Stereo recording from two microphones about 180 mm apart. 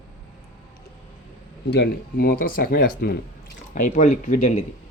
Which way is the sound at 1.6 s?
65° left (ahead or behind).